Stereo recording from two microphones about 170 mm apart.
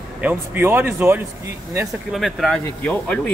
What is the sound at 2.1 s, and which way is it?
Speech, centre (ahead or behind).